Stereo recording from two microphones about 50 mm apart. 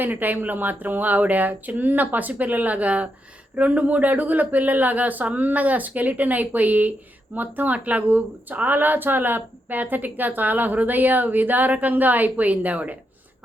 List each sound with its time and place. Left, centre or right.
0.0 s speech: right